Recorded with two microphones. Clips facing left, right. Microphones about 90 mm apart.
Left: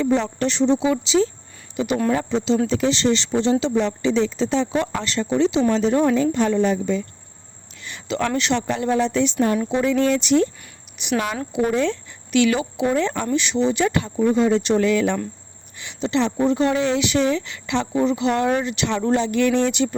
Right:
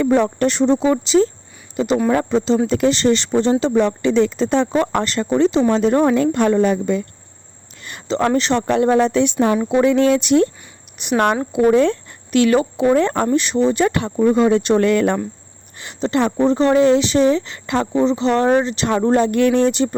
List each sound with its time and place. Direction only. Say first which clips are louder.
0.0 s speech: right 5 dB; 55° right (ahead or behind); by 2.0 s 35° right (ahead or behind)
2.0 s speech: right 3 dB; 50° right (ahead or behind)
3.8 s speech: right 4 dB; 55° right (ahead or behind)
7.8 s a sound: right 2 dB; 50° right (ahead or behind)
8.0 s speech: right 5 dB; 35° right (ahead or behind)
8.6 s speech: right 6 dB; 55° right (ahead or behind)
16.4 s speech: right 7 dB; 35° right (ahead or behind)